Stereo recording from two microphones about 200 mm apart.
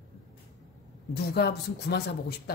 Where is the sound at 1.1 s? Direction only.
50° left (ahead or behind).